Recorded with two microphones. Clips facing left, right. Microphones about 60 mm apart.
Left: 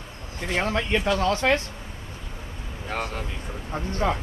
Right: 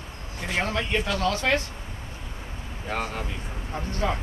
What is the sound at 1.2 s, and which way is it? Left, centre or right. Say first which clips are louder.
Speech: left 1 dB; left.